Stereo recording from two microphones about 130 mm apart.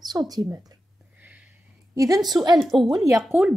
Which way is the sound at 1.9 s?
25° right (ahead or behind).